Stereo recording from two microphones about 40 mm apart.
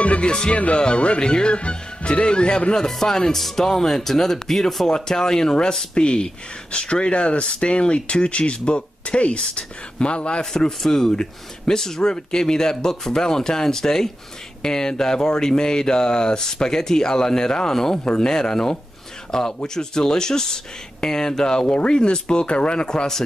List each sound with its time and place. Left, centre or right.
0.0 s speech: left
10.4 s speech: centre